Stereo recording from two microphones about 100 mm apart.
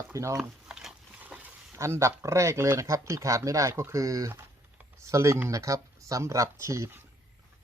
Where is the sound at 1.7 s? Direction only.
30° right (ahead or behind).